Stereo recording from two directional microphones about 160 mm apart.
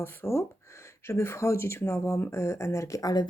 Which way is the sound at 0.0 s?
15° left (ahead or behind).